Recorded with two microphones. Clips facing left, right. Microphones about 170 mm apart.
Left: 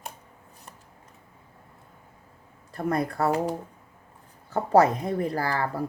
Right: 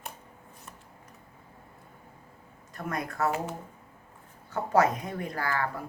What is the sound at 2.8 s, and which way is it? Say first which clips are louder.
Speech: left 6 dB; 35° left (ahead or behind).